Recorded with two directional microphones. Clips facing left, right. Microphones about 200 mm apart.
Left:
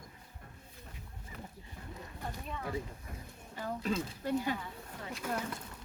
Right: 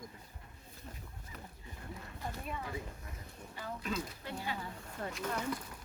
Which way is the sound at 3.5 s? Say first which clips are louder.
Left 4 dB; 45° left (ahead or behind).